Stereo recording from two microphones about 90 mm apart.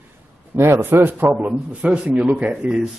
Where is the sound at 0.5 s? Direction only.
30° right (ahead or behind); by 2.8 s 10° right (ahead or behind).